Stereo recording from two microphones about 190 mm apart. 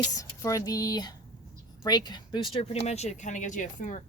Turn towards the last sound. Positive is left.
turn(degrees=40)  # may be behind; listen again after turning